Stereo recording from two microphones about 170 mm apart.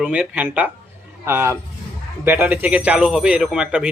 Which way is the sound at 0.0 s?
5° right (ahead or behind).